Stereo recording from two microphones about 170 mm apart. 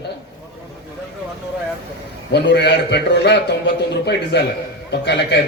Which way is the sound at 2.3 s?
80° left.